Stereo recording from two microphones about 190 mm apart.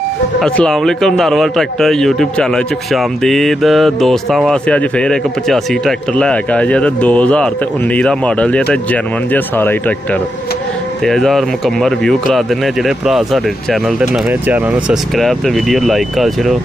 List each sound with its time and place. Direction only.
0.4 s speech: centre (ahead or behind)
11.1 s speech: centre (ahead or behind)